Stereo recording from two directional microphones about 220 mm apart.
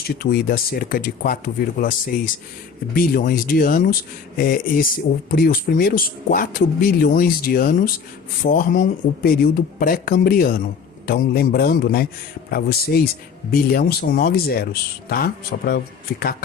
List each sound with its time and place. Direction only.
0.0 s speech: 45° left (ahead or behind)